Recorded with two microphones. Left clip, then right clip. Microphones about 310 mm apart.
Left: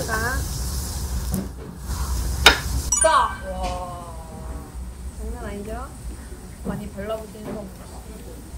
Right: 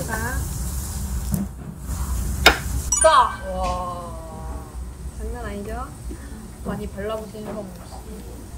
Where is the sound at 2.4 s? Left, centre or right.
Centre.